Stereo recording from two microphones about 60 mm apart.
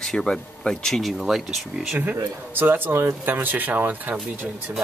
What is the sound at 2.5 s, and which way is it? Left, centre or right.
Speech, right.